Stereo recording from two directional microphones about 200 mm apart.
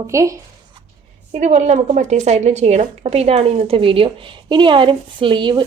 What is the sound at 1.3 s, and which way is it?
A woman's voice, 35° right (ahead or behind).